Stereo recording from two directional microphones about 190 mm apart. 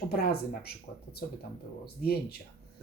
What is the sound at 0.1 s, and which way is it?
Speech, 55° left (ahead or behind).